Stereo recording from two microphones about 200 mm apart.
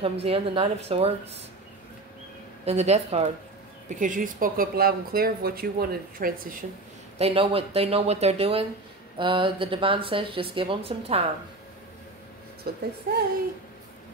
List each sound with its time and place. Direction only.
0.0 s a woman's voice: 30° right (ahead or behind)
2.6 s a woman's voice: 35° right (ahead or behind)
7.2 s speech: 30° right (ahead or behind)
12.7 s speech: 50° right (ahead or behind)